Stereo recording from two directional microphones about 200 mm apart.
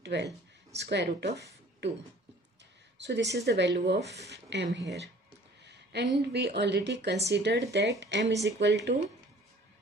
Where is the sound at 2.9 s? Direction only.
60° right (ahead or behind).